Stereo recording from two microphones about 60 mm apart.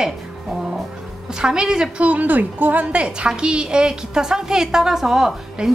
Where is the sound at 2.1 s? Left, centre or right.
Right.